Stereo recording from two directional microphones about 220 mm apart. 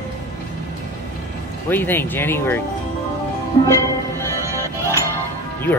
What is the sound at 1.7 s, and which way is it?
Speech, 10° left (ahead or behind).